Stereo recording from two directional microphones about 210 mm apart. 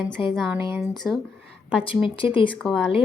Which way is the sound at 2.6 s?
Centre (ahead or behind).